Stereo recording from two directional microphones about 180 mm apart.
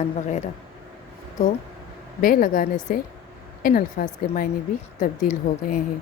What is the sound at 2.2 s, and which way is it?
A woman's voice, 50° left (ahead or behind).